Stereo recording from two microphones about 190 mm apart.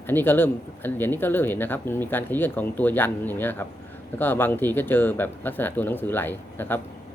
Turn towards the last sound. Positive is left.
turn(degrees=10)  # may be behind; listen again after turning